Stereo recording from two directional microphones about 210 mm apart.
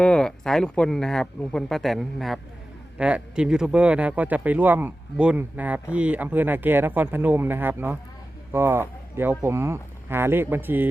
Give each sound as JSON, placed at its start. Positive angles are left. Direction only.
{"t": 0.0, "sound": "speech", "side_deg": 5}